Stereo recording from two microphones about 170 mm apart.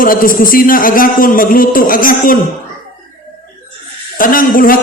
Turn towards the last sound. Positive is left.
turn(degrees=55)  # may be behind; listen again after turning